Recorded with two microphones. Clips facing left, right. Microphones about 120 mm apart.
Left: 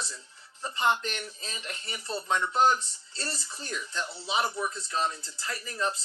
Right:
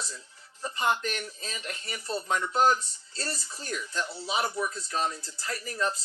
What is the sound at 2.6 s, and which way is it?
Speech, 40° right (ahead or behind).